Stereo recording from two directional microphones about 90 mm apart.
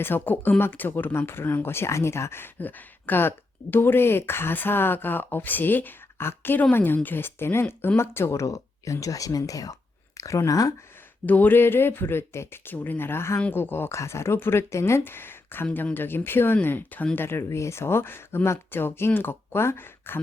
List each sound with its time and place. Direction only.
0.0 s speech: 20° left (ahead or behind); by 10.8 s 40° left (ahead or behind)
11.3 s speech: 20° left (ahead or behind)